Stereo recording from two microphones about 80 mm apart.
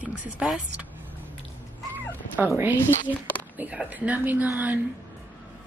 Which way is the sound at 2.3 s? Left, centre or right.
Right.